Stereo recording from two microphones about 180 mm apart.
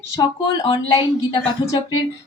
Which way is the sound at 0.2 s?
25° left (ahead or behind).